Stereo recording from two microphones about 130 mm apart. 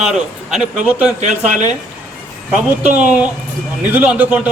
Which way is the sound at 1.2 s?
65° right (ahead or behind).